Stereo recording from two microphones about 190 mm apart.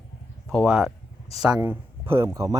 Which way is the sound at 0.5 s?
Centre (ahead or behind).